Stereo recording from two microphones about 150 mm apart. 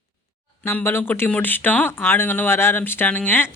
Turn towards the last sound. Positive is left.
turn(degrees=15)  # may be behind; listen again after turning